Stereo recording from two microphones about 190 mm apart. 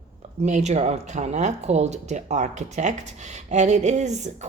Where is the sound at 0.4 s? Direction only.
35° right (ahead or behind).